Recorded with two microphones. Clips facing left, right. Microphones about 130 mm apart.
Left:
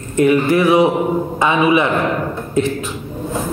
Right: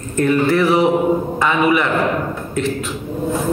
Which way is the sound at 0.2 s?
15° left (ahead or behind).